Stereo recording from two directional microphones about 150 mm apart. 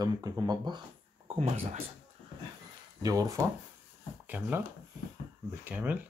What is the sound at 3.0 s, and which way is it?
Speech, 25° right (ahead or behind).